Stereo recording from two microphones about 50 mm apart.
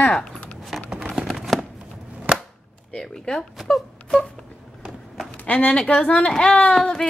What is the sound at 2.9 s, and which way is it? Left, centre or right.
Speech, centre.